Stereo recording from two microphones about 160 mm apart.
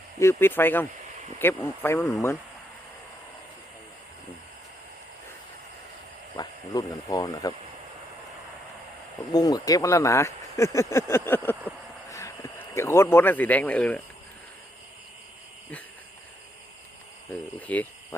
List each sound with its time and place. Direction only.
0.2 s speech: 15° left (ahead or behind)
6.3 s speech: 25° left (ahead or behind)
9.3 s speech: 25° left (ahead or behind)
17.6 s speech: 10° left (ahead or behind)